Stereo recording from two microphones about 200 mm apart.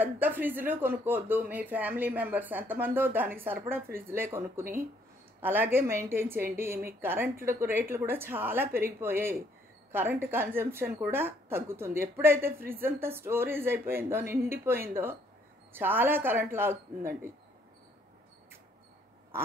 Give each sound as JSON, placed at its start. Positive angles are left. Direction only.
{"t": 0.0, "sound": "speech", "side_deg": -10}